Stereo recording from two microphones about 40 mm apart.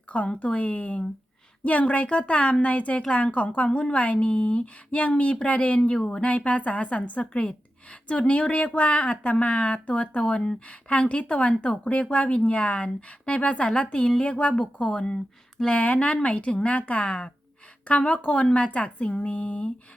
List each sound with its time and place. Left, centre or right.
0.4 s a woman's voice: left